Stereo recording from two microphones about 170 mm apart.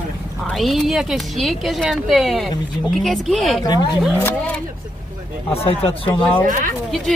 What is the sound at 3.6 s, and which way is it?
Speech, 25° left (ahead or behind).